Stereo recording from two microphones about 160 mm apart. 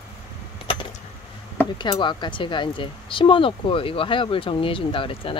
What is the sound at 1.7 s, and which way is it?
Speech, 30° left (ahead or behind).